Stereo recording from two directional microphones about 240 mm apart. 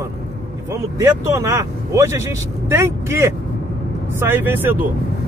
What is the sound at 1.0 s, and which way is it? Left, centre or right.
Speech, centre.